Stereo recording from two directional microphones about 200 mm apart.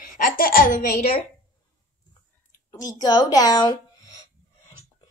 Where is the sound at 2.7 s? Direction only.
20° left (ahead or behind).